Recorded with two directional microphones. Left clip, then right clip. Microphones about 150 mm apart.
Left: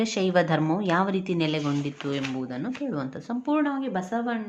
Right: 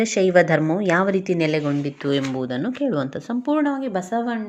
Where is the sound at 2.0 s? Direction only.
40° right (ahead or behind).